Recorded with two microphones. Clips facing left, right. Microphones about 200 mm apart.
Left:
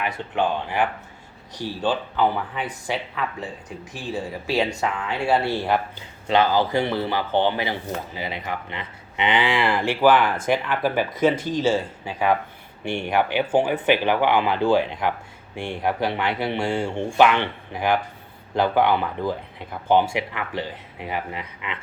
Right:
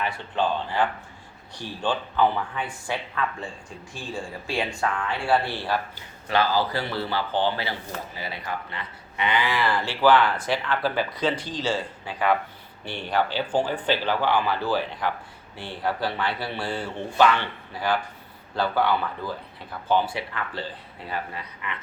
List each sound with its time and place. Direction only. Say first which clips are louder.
0.0 s speech: left 2 dB; 20° left (ahead or behind)
6.2 s speech: left 4 dB; 20° left (ahead or behind)
11.3 s speech: left 7 dB; 45° left (ahead or behind)
11.6 s speech: left 5 dB; 10° left (ahead or behind)